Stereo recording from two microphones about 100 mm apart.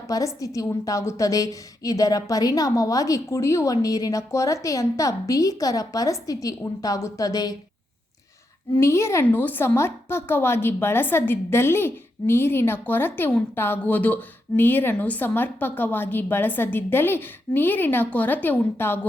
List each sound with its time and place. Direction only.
0.1 s a woman's voice: 35° left (ahead or behind)
8.8 s a woman's voice: 30° left (ahead or behind)
9.2 s a woman's voice: 20° left (ahead or behind)